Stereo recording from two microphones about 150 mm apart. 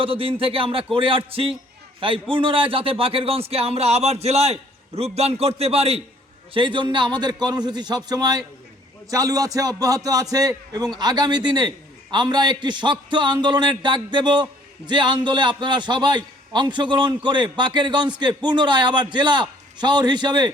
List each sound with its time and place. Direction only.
0.0 s a man's voice: 35° right (ahead or behind)